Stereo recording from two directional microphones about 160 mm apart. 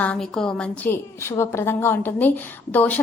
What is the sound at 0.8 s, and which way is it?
A woman's voice, 15° left (ahead or behind).